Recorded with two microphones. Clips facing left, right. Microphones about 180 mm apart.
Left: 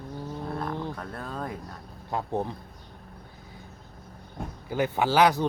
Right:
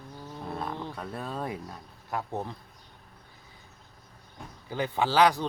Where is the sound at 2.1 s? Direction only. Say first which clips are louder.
Left 4 dB; 15° left (ahead or behind).